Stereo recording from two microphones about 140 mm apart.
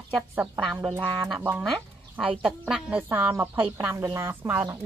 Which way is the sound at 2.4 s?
5° right (ahead or behind).